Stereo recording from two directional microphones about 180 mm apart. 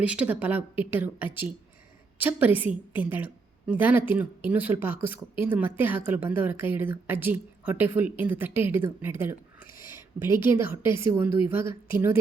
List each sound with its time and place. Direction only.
0.0 s a woman's voice: 5° right (ahead or behind)